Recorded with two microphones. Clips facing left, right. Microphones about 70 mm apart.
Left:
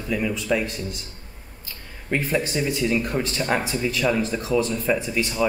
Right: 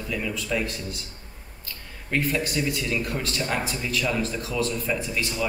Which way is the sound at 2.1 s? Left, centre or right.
Left.